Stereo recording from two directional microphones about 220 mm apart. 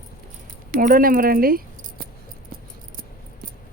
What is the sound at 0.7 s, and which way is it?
Speech, 40° right (ahead or behind).